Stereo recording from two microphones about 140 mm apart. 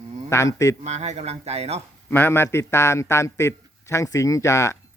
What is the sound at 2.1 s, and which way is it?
A man's voice, 15° left (ahead or behind).